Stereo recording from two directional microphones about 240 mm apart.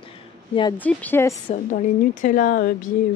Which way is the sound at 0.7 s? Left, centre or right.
Centre.